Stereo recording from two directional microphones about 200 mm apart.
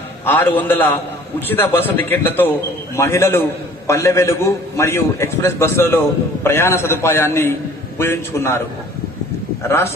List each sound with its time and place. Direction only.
0.2 s a man's voice: 10° left (ahead or behind)